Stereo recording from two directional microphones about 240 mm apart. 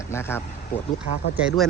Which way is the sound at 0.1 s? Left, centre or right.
Centre.